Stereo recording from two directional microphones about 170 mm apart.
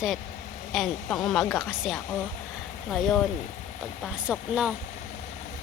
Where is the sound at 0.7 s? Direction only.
Centre (ahead or behind).